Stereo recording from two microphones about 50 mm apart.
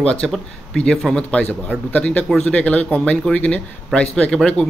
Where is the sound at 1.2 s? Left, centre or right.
Left.